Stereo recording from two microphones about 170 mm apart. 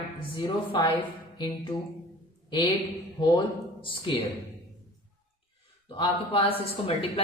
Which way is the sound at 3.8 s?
30° left (ahead or behind).